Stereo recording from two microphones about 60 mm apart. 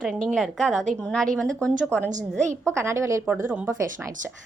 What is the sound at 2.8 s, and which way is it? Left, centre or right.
Speech, right.